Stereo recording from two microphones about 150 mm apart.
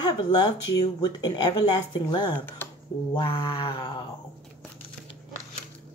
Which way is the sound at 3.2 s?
35° left (ahead or behind).